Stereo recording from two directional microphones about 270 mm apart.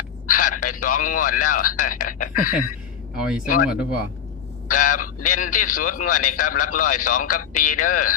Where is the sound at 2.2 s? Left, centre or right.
Left.